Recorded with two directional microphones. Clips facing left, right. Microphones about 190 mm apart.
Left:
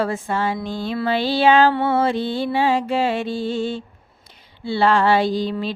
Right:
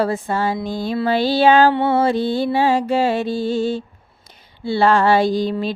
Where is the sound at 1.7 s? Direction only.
20° right (ahead or behind).